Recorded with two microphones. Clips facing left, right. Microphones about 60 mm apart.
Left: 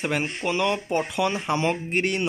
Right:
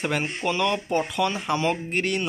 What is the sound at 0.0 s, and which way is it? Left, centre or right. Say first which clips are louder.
Speech: even; centre.